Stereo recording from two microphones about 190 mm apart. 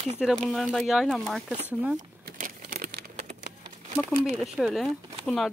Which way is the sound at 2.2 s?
45° right (ahead or behind).